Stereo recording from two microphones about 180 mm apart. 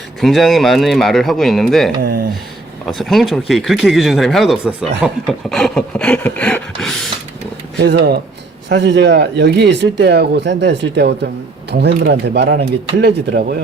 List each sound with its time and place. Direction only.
0.2 s speech: centre (ahead or behind)
7.8 s speech: 70° right (ahead or behind)